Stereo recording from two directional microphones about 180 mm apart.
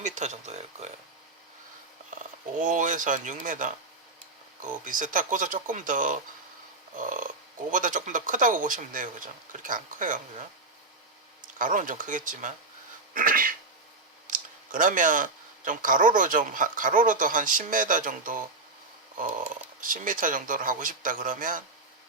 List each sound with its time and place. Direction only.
0.0 s speech: 40° right (ahead or behind)
2.6 s speech: 45° right (ahead or behind)
11.5 s speech: 45° right (ahead or behind)